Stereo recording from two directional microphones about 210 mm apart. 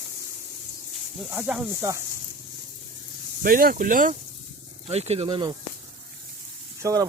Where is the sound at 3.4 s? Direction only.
45° right (ahead or behind).